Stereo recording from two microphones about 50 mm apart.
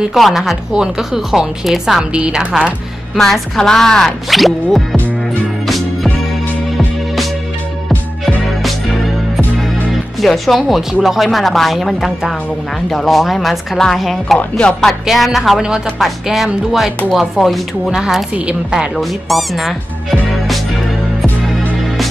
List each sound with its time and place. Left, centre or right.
0.1 s a woman's voice: centre
3.2 s speech: centre
10.2 s a woman's voice: centre
17.9 s a woman's voice: centre
18.9 s speech: centre